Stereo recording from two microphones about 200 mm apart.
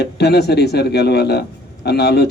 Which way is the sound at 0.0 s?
55° left (ahead or behind).